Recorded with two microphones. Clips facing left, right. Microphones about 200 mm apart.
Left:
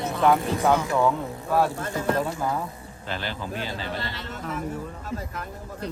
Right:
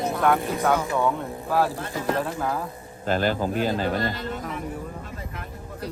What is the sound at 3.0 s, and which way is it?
Speech, 45° right (ahead or behind).